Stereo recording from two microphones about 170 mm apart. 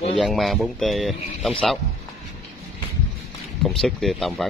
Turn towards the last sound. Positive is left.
turn(degrees=0)  # may be behind; listen again after turning